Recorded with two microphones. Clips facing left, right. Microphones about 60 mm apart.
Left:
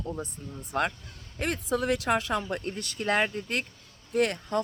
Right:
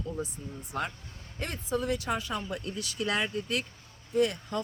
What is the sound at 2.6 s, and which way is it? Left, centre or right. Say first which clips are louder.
Speech: even; left.